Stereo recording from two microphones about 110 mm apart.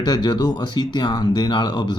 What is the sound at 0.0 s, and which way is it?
Speech, 40° left (ahead or behind).